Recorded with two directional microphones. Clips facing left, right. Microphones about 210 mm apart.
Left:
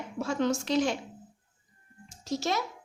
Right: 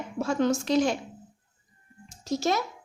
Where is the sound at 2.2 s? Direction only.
45° right (ahead or behind).